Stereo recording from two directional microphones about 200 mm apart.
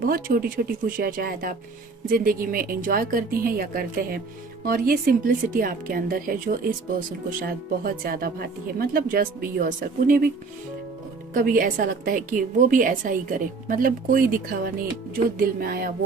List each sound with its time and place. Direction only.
0.0 s a woman's voice: 45° right (ahead or behind)
8.0 s a woman's voice: 45° right (ahead or behind)
11.3 s a woman's voice: 45° right (ahead or behind)